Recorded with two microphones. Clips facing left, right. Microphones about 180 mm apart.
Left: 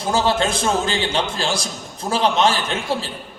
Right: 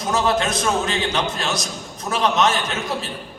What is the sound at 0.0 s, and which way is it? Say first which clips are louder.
A man's voice: left 1 dB; 30° left (ahead or behind).